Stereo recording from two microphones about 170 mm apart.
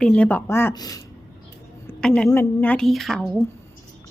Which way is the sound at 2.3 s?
10° left (ahead or behind).